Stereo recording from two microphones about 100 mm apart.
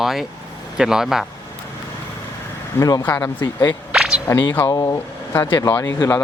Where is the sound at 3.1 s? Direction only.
25° left (ahead or behind).